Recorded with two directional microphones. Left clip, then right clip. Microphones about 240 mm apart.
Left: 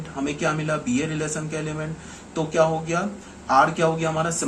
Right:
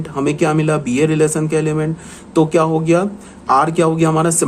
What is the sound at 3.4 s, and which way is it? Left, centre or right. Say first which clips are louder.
Speech: right 5 dB; right.